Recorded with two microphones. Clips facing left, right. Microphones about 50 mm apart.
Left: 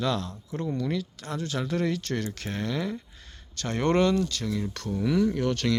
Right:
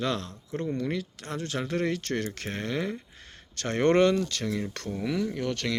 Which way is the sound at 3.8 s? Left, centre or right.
Right.